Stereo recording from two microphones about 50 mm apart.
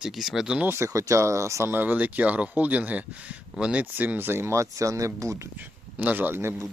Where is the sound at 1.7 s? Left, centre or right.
Right.